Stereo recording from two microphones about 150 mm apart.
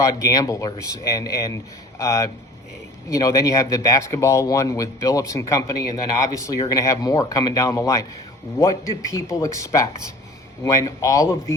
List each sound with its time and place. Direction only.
0.0 s speech: 20° left (ahead or behind)